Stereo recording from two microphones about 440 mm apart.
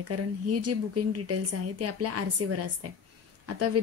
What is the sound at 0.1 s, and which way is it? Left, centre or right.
A woman's voice, right.